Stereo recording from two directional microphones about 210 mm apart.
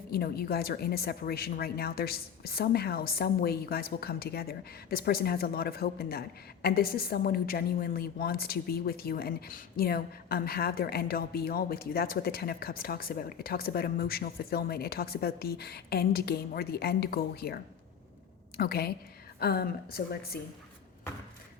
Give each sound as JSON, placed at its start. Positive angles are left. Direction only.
{"t": 0.1, "sound": "a woman's voice", "side_deg": 45}